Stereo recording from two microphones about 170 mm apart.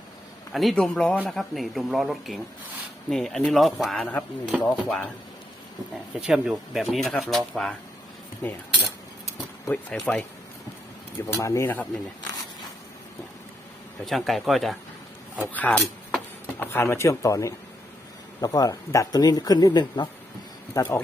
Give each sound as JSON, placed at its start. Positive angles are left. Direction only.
{"t": 0.5, "sound": "speech", "side_deg": 0}
{"t": 6.1, "sound": "speech", "side_deg": -5}
{"t": 9.6, "sound": "speech", "side_deg": 5}
{"t": 11.3, "sound": "speech", "side_deg": 15}
{"t": 14.0, "sound": "speech", "side_deg": 0}